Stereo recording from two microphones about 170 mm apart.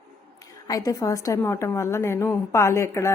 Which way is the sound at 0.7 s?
20° left (ahead or behind).